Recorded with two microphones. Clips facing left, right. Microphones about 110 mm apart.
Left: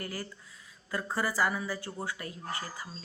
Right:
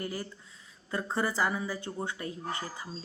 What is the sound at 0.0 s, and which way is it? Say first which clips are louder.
A woman's voice: right 2 dB; 20° right (ahead or behind).